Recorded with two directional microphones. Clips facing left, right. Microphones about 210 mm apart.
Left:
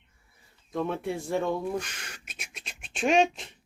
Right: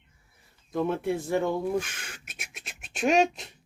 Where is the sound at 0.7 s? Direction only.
5° right (ahead or behind).